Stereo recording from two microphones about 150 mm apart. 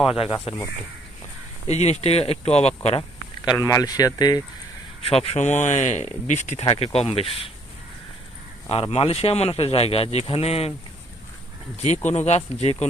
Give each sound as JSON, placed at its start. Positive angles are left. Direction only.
{"t": 0.0, "sound": "speech", "side_deg": 40}
{"t": 1.7, "sound": "speech", "side_deg": 45}
{"t": 3.5, "sound": "speech", "side_deg": 20}
{"t": 5.0, "sound": "speech", "side_deg": 40}
{"t": 6.6, "sound": "speech", "side_deg": 40}
{"t": 8.6, "sound": "speech", "side_deg": 40}
{"t": 11.7, "sound": "speech", "side_deg": 50}